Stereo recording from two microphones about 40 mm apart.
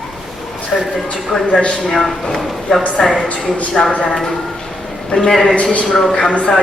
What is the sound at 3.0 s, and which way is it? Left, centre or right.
A woman's voice, centre.